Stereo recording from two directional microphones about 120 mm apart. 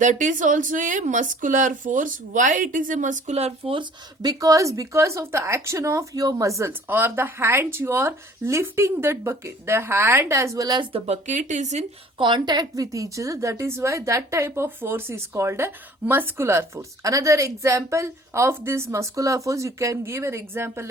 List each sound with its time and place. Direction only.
0.0 s speech: 90° right; by 3.8 s 50° right (ahead or behind)
4.2 s a woman's voice: 30° right (ahead or behind)
10.9 s speech: 70° right (ahead or behind)
12.2 s a woman's voice: 40° right (ahead or behind); by 20.9 s 20° right (ahead or behind)